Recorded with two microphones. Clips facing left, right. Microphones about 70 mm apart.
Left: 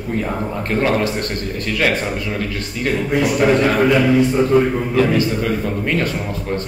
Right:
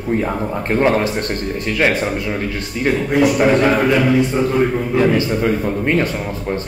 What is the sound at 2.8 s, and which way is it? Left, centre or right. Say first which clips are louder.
Speech: right 3 dB; right.